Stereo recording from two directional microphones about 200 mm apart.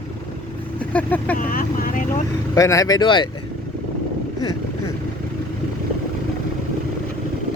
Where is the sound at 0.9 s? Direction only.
10° left (ahead or behind).